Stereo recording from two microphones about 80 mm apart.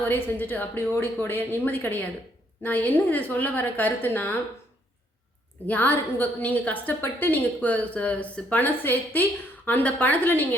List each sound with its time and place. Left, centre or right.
0.1 s a woman's voice: left
5.6 s a woman's voice: left